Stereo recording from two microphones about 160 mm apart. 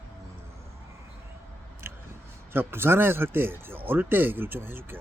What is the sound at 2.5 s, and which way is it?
Speech, 15° right (ahead or behind).